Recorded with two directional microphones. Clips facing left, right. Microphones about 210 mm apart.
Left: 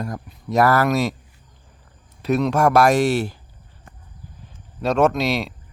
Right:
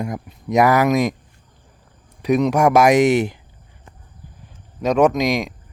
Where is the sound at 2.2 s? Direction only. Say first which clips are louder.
Right 2 dB; 15° right (ahead or behind).